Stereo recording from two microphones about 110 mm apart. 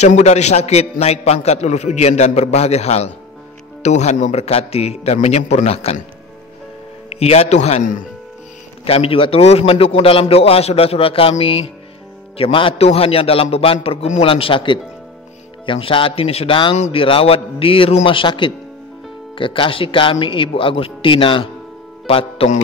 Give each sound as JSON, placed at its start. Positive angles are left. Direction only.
{"t": 0.0, "sound": "a man's voice", "side_deg": 90}
{"t": 3.8, "sound": "a man's voice", "side_deg": 90}
{"t": 7.1, "sound": "a man's voice", "side_deg": 70}
{"t": 8.8, "sound": "a man's voice", "side_deg": 60}
{"t": 14.3, "sound": "a man's voice", "side_deg": 55}
{"t": 16.7, "sound": "speech", "side_deg": 90}
{"t": 17.0, "sound": "a man's voice", "side_deg": 60}
{"t": 22.0, "sound": "speech", "side_deg": 60}